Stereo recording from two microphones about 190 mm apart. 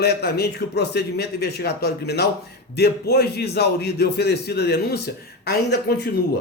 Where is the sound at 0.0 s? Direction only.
60° left (ahead or behind).